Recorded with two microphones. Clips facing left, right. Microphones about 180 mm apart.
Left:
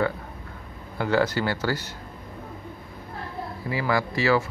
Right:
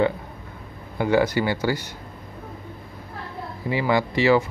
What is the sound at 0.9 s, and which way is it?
Speech, 15° right (ahead or behind).